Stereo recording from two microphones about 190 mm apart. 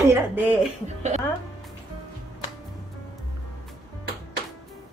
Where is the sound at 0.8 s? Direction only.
35° right (ahead or behind).